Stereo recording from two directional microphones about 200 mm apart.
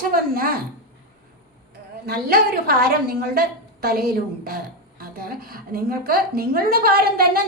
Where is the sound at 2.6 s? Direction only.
50° right (ahead or behind).